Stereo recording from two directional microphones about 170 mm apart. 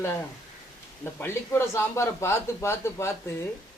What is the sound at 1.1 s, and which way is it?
A man's voice, 15° left (ahead or behind).